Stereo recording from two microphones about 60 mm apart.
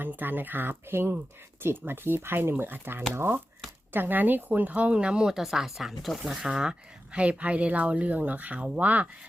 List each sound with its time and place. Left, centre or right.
0.0 s speech: right
3.9 s speech: right; by 5.4 s centre
5.4 s speech: centre; by 9.0 s right